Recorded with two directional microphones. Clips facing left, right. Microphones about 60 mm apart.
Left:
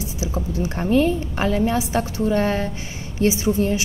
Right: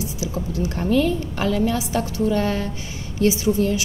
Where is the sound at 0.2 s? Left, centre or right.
Left.